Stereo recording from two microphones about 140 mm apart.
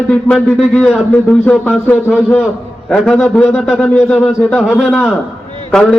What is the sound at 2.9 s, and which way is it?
A man's voice, 5° left (ahead or behind).